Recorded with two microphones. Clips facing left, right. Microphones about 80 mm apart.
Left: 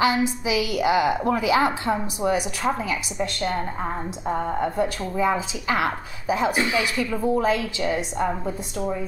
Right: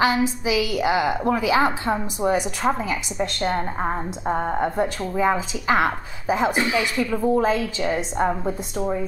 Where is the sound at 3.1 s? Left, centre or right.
Right.